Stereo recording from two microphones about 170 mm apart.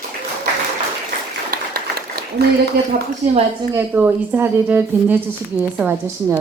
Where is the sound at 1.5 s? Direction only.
65° right (ahead or behind).